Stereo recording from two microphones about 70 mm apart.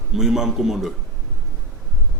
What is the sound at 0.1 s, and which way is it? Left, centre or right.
Speech, centre.